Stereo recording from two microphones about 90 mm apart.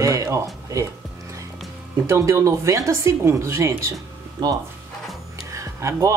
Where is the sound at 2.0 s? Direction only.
35° right (ahead or behind).